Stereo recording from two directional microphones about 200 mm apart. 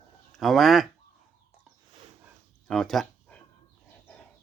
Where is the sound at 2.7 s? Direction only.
Centre (ahead or behind).